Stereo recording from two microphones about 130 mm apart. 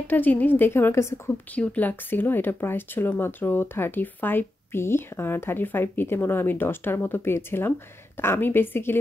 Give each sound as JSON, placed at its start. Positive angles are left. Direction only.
{"t": 0.0, "sound": "speech", "side_deg": 15}